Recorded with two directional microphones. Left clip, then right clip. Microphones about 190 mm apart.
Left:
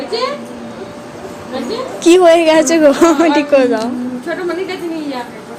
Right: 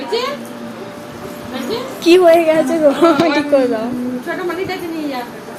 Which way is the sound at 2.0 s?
20° left (ahead or behind).